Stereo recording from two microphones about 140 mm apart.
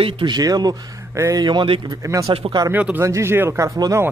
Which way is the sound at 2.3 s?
35° right (ahead or behind).